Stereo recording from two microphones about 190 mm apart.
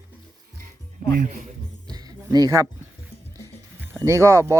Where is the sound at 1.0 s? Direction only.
50° right (ahead or behind).